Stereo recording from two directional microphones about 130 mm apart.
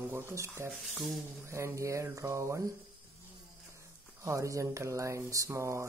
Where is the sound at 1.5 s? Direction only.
20° right (ahead or behind).